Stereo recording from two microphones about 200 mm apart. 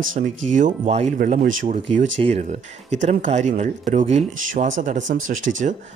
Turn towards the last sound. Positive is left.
turn(degrees=-45)  # may be behind; listen again after turning